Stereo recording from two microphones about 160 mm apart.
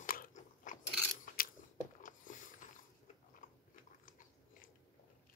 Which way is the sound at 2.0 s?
55° left (ahead or behind).